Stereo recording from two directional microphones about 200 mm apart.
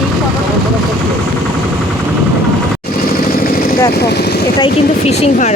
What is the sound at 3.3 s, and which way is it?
Vehicle, 45° left (ahead or behind).